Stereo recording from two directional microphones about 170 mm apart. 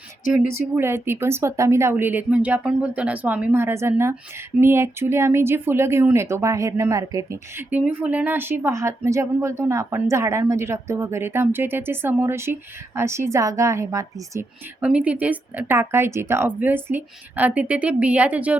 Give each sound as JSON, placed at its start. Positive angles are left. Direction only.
{"t": 0.8, "sound": "speech", "side_deg": -15}
{"t": 14.8, "sound": "speech", "side_deg": -10}